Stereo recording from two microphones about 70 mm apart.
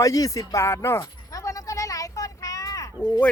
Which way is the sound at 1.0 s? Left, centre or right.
Left.